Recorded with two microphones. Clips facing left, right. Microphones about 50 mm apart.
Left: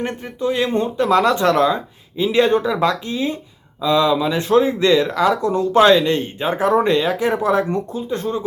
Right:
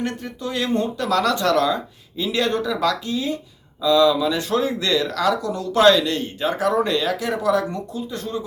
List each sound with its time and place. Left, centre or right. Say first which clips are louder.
0.0 s speech: left 4 dB; left